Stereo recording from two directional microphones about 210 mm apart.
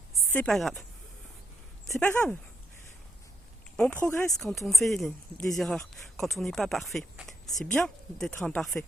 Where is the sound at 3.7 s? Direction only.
5° left (ahead or behind).